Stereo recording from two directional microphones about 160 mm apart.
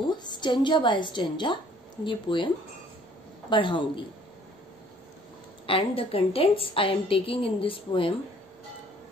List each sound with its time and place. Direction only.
0.1 s a woman's voice: 30° left (ahead or behind)
5.7 s a woman's voice: 35° left (ahead or behind)